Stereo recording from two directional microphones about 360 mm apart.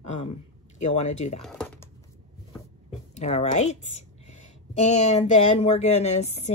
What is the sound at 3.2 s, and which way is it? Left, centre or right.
Speech, centre.